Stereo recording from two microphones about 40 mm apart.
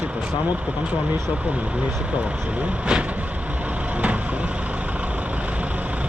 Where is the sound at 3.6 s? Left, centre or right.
Right.